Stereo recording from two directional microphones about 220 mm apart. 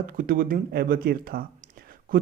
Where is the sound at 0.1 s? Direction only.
40° right (ahead or behind).